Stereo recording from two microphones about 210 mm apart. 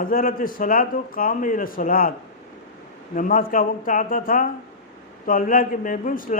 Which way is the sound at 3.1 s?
40° left (ahead or behind).